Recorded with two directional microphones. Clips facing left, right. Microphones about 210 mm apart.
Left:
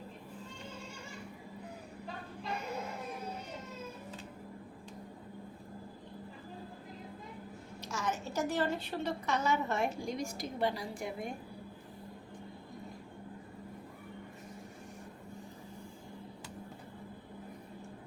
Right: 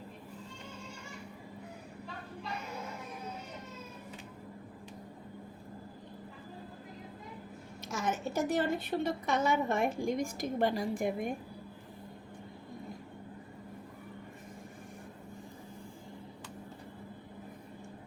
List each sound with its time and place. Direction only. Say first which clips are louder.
7.9 s a woman's voice: right 3 dB; 55° right (ahead or behind)